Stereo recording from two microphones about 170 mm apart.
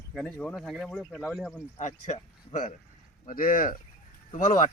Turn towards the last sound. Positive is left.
turn(degrees=50)  # may be behind; listen again after turning